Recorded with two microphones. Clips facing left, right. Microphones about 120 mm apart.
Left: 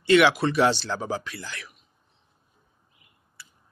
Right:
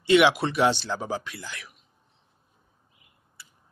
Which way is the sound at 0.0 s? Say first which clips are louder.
Left 1 dB; 15° right (ahead or behind).